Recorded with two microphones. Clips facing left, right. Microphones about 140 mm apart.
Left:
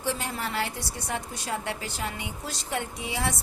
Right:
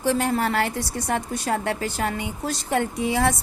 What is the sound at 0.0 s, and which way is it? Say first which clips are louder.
A woman's voice: right 9 dB; 50° right (ahead or behind).